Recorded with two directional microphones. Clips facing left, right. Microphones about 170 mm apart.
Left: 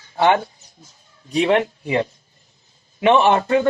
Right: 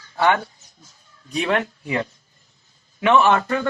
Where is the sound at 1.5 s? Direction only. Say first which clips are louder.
Left 3 dB; 25° left (ahead or behind).